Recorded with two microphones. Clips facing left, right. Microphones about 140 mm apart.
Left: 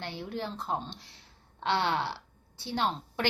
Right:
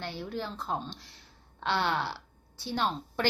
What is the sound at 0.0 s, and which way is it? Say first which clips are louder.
A woman's voice: even; 20° left (ahead or behind).